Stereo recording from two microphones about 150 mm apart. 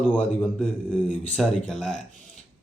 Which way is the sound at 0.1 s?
10° left (ahead or behind).